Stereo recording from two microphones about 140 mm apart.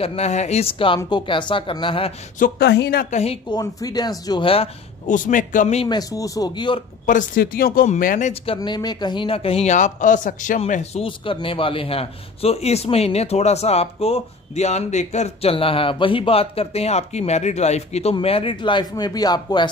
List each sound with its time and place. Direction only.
0.0 s speech: 45° left (ahead or behind)
2.3 s speech: 85° left
3.4 s speech: 30° left (ahead or behind)
5.0 s speech: 65° left (ahead or behind)
5.9 s speech: 25° left (ahead or behind)
7.1 s speech: 75° left (ahead or behind)
8.5 s a man's voice: 30° left (ahead or behind); by 10.6 s 65° left (ahead or behind)
10.7 s a man's voice: 50° left (ahead or behind)
11.1 s a man's voice: 40° left (ahead or behind)